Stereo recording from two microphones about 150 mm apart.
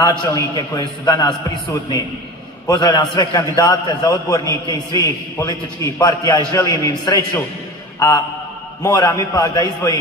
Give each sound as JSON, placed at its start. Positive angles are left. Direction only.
{"t": 0.0, "sound": "a man's voice", "side_deg": 25}
{"t": 8.8, "sound": "a man's voice", "side_deg": 25}